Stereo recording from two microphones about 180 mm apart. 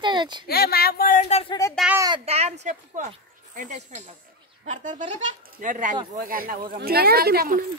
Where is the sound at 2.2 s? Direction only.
35° right (ahead or behind); by 7.6 s 55° right (ahead or behind).